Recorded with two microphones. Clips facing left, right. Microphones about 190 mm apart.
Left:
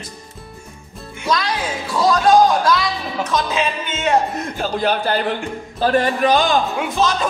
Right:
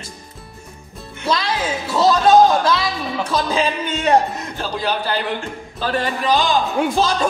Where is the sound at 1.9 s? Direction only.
25° right (ahead or behind).